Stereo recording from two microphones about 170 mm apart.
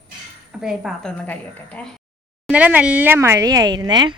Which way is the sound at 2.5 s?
10° right (ahead or behind).